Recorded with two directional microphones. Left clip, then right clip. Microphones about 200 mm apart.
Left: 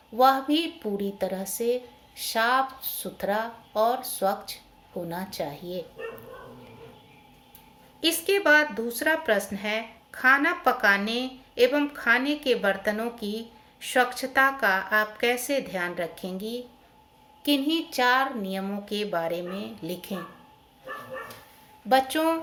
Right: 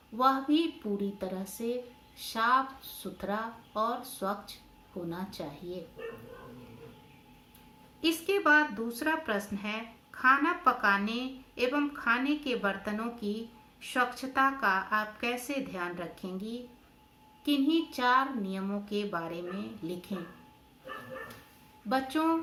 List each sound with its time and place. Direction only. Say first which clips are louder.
0.2 s speech: left 6 dB; 10° left (ahead or behind)
8.3 s speech: left 5 dB; 15° left (ahead or behind)
21.8 s speech: left 9 dB; 10° left (ahead or behind)